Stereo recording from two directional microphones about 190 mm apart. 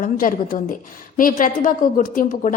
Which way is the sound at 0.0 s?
45° left (ahead or behind).